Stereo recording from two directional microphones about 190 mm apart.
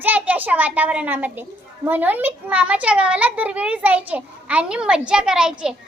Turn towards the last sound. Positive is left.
turn(degrees=-5)  # may be behind; listen again after turning